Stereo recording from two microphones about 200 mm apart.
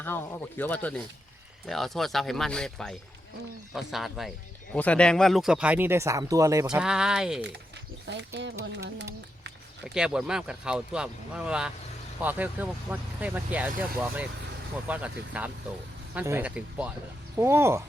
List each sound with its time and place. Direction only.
0.0 s speech: 10° left (ahead or behind); by 6.7 s 15° right (ahead or behind)
6.7 s speech: 5° right (ahead or behind)
8.0 s speech: 60° right (ahead or behind)
9.8 s speech: 5° right (ahead or behind)
14.8 s speech: 5° right (ahead or behind)